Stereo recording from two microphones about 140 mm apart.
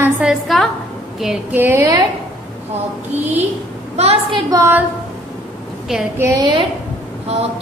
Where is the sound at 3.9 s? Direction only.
50° right (ahead or behind).